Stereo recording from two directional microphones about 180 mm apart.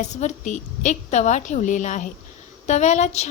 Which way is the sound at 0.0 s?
40° left (ahead or behind).